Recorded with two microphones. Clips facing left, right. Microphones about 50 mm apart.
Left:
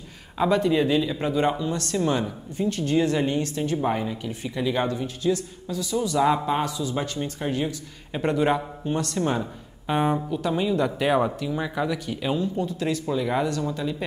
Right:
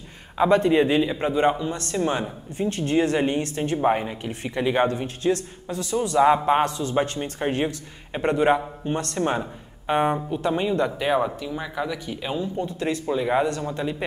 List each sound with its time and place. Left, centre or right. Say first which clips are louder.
0.5 s speech: right 2 dB; right
3.7 s a man's voice: right 5 dB; right
6.1 s a man's voice: right 5 dB; right
8.1 s speech: right 2 dB; centre
12.4 s speech: left 1 dB; right
13.5 s speech: even; right